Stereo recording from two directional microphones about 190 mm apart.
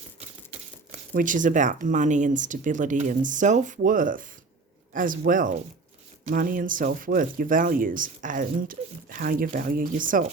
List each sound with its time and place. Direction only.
0.9 s speech: 45° right (ahead or behind)